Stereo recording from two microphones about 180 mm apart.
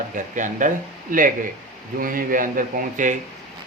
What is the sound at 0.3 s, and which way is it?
Speech, 45° right (ahead or behind).